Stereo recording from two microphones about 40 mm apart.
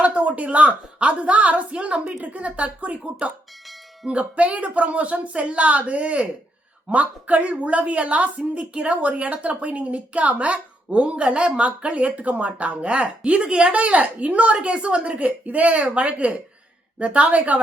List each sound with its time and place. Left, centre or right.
0.0 s speech: right